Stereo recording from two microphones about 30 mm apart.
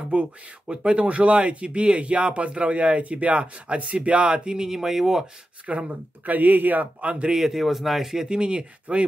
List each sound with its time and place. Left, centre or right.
0.1 s speech: right
4.5 s speech: right
4.7 s speech: centre
5.7 s speech: right
6.2 s speech: right
7.0 s speech: right
7.3 s speech: centre
8.3 s speech: right